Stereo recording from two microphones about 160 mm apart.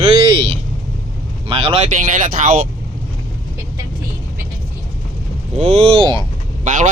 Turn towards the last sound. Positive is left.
turn(degrees=-55)  # may be behind; listen again after turning